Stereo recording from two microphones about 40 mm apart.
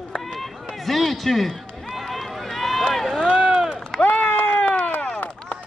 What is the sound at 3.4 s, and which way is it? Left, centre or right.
Run, right.